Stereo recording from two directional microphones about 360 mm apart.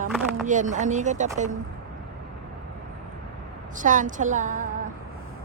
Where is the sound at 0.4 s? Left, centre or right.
Right.